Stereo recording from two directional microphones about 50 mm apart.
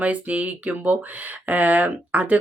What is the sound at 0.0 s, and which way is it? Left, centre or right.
Speech, right.